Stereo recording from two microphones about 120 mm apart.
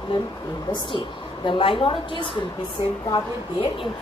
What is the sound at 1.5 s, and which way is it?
Speech, 45° left (ahead or behind).